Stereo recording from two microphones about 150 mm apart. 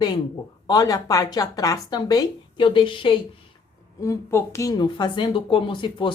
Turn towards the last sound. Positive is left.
turn(degrees=35)  # may be behind; listen again after turning